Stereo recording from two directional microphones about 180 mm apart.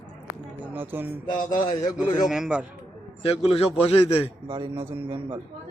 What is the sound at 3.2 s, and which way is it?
Speech, 35° left (ahead or behind).